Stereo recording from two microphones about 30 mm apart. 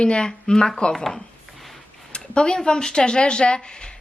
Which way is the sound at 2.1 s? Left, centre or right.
Left.